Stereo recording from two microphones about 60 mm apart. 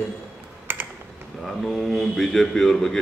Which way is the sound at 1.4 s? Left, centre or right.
Centre.